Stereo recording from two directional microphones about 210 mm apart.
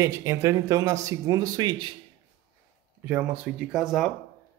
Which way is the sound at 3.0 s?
5° right (ahead or behind).